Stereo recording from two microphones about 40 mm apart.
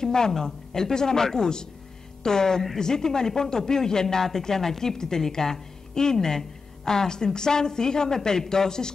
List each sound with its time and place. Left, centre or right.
0.0 s speech: centre